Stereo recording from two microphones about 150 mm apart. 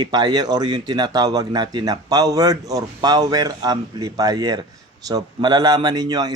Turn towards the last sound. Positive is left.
turn(degrees=-25)  # may be behind; listen again after turning